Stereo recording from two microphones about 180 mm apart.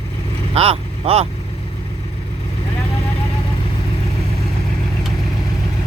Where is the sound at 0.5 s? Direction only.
35° right (ahead or behind).